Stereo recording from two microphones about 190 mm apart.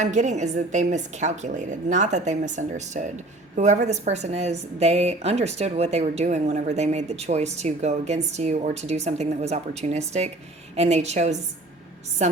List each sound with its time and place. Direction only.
0.0 s speech: 40° right (ahead or behind)